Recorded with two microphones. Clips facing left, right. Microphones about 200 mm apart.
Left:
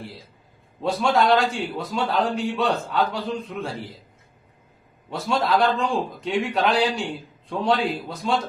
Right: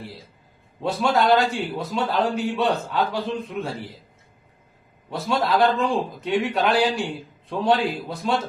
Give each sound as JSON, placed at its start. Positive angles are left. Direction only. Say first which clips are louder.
{"t": 0.8, "sound": "a man's voice", "louder": "even", "side_deg": 0}
{"t": 5.1, "sound": "a man's voice", "louder": "even", "side_deg": 0}